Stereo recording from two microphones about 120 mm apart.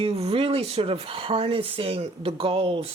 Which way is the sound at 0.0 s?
55° right (ahead or behind).